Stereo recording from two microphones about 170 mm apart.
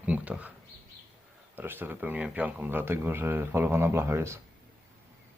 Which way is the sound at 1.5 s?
10° right (ahead or behind).